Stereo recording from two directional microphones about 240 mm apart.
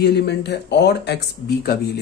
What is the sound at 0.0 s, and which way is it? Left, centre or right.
Speech, left.